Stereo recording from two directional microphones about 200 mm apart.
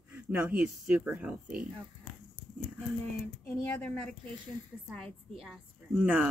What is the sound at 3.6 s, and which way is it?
Speech, 5° left (ahead or behind).